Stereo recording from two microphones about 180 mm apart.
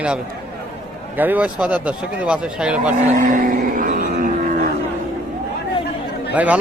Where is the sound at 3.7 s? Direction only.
50° right (ahead or behind).